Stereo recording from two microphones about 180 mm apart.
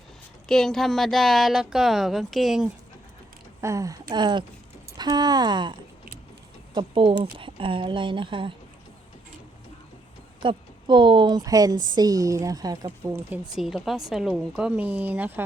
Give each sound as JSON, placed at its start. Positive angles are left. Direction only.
{"t": 0.4, "sound": "a woman's voice", "side_deg": 0}
{"t": 3.6, "sound": "speech", "side_deg": -15}
{"t": 6.7, "sound": "speech", "side_deg": -30}
{"t": 10.4, "sound": "a woman's voice", "side_deg": -25}
{"t": 13.5, "sound": "a woman's voice", "side_deg": 0}